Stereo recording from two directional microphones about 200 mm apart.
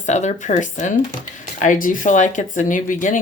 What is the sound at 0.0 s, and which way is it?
Speech, 35° left (ahead or behind).